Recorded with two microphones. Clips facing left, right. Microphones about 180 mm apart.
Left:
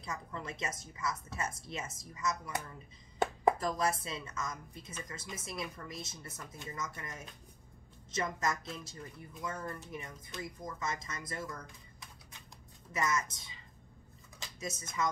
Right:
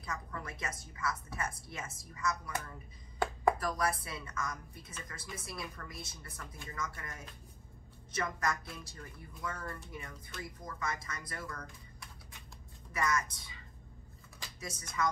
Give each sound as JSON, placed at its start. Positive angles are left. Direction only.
{"t": 0.0, "sound": "speech", "side_deg": 25}
{"t": 14.6, "sound": "speech", "side_deg": 20}